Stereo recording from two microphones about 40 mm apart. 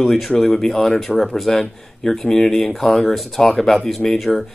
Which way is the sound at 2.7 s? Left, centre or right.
Centre.